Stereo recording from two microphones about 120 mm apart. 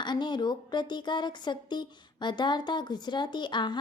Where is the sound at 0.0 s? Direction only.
40° left (ahead or behind).